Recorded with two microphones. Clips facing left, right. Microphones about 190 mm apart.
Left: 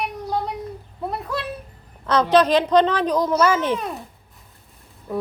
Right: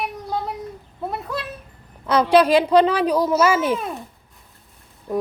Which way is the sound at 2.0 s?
10° right (ahead or behind).